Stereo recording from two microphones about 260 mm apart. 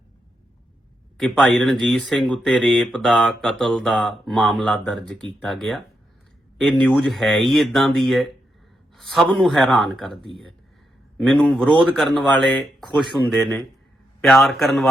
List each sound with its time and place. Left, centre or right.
1.2 s speech: centre
10.2 s speech: centre
11.2 s speech: centre